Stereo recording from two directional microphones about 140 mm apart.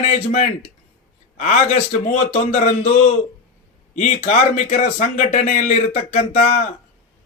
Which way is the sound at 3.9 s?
60° left (ahead or behind).